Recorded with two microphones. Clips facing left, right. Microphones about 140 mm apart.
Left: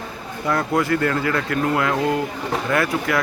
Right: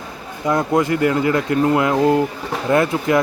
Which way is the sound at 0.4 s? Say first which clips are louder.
Right 3 dB; 20° right (ahead or behind).